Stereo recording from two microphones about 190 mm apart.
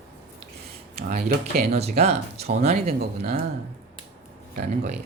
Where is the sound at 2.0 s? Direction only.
35° right (ahead or behind).